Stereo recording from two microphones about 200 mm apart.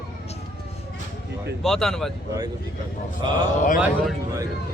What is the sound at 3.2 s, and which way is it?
Speech, 25° right (ahead or behind).